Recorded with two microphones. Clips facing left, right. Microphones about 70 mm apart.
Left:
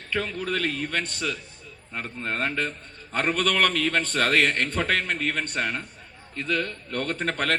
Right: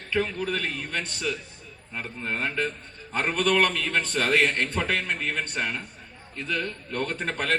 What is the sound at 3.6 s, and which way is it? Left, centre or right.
A man's voice, left.